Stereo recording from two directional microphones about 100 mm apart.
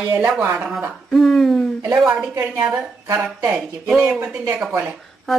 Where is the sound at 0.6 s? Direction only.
10° right (ahead or behind).